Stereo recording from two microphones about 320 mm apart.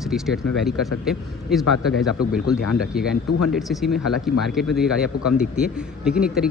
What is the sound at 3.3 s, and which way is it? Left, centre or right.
Speech, left.